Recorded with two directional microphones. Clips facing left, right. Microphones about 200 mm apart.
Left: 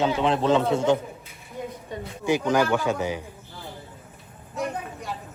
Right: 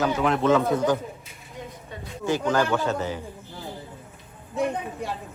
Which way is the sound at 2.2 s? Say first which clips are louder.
Left 1 dB; 10° left (ahead or behind).